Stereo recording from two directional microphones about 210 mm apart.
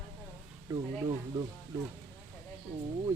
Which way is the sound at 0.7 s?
20° right (ahead or behind).